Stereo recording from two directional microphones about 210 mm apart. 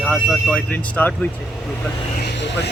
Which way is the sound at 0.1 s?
5° left (ahead or behind).